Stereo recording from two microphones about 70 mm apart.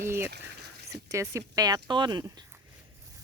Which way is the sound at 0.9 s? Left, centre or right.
Right.